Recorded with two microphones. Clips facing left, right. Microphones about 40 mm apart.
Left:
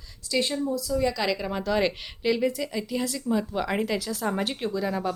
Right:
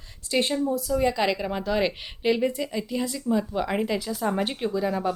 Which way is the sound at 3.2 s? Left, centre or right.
Centre.